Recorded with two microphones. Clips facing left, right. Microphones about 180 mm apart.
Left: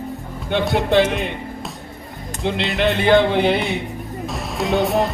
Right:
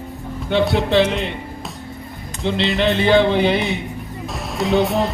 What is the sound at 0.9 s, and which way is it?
Music, 55° left (ahead or behind).